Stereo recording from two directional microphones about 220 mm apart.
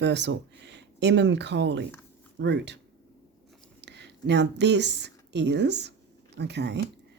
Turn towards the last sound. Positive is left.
turn(degrees=-50)  # may be behind; listen again after turning